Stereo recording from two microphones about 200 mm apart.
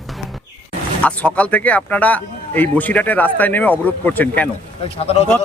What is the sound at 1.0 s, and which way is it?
Speech, 5° left (ahead or behind).